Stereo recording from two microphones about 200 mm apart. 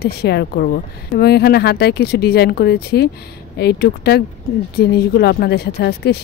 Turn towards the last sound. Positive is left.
turn(degrees=55)  # may be behind; listen again after turning